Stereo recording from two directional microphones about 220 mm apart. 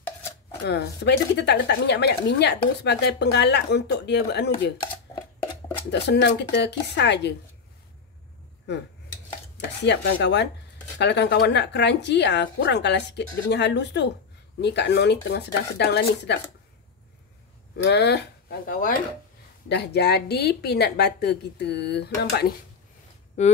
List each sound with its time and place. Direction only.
0.7 s a woman's voice: 50° left (ahead or behind)
5.9 s a woman's voice: 50° left (ahead or behind)
9.6 s a woman's voice: 50° left (ahead or behind)
17.8 s a woman's voice: 50° left (ahead or behind)
18.7 s a woman's voice: 40° left (ahead or behind)
23.4 s speech: 30° left (ahead or behind)